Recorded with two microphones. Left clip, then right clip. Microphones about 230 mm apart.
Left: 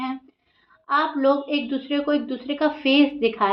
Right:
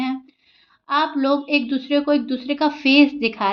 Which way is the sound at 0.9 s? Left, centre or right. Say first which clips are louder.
Right 1 dB; right.